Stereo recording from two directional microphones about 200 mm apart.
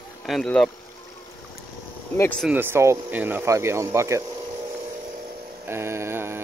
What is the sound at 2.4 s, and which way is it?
Speech, 10° right (ahead or behind).